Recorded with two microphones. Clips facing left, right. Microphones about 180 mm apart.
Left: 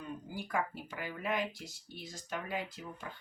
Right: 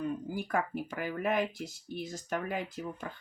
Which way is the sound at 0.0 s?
50° right (ahead or behind).